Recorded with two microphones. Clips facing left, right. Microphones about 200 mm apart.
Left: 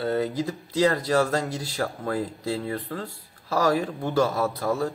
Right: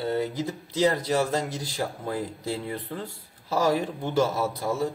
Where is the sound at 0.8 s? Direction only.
15° right (ahead or behind).